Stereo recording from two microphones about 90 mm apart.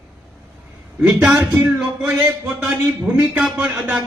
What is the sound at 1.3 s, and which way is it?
A man's voice, 30° right (ahead or behind).